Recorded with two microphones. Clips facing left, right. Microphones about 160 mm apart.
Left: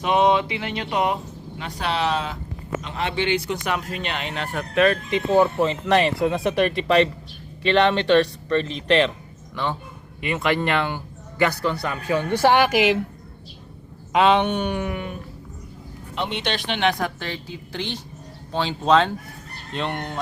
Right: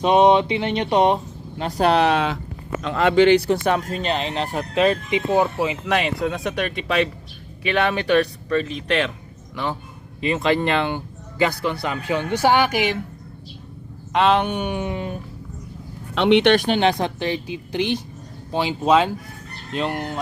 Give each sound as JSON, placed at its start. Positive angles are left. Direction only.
{"t": 0.0, "sound": "speech", "side_deg": -20}
{"t": 2.9, "sound": "speech", "side_deg": -55}
{"t": 3.7, "sound": "speech", "side_deg": -35}
{"t": 10.2, "sound": "speech", "side_deg": -25}
{"t": 12.5, "sound": "a woman's voice", "side_deg": 0}
{"t": 14.1, "sound": "speech", "side_deg": 0}
{"t": 16.1, "sound": "speech", "side_deg": -75}
{"t": 16.6, "sound": "speech", "side_deg": -40}
{"t": 17.0, "sound": "a woman's voice", "side_deg": -15}